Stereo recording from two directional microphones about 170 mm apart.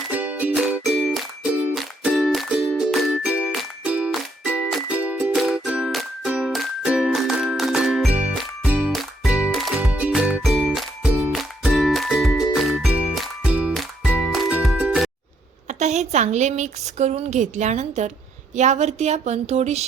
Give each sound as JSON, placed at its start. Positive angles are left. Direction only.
{"t": 0.1, "sound": "music", "side_deg": -10}
{"t": 15.6, "sound": "a woman's voice", "side_deg": -40}